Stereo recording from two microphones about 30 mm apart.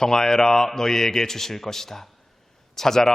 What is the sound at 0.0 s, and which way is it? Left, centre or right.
A man's voice, centre.